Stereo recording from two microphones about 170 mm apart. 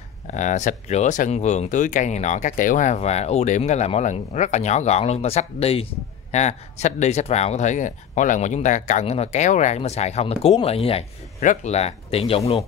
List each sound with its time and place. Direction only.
0.3 s speech: 45° left (ahead or behind)